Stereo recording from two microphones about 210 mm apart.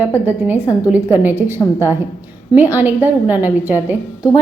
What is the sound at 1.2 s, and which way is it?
A woman's voice, 10° right (ahead or behind).